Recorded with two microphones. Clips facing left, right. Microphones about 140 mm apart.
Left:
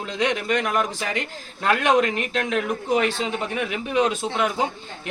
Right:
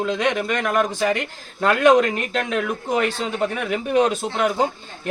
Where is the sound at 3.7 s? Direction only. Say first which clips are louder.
Right 3 dB; 50° right (ahead or behind).